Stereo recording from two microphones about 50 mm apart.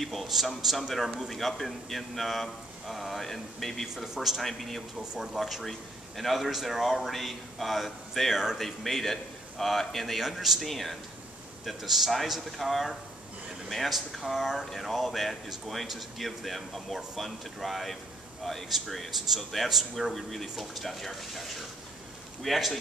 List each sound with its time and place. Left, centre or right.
0.0 s speech: centre
3.9 s speech: centre
5.1 s speech: centre
5.4 s speech: centre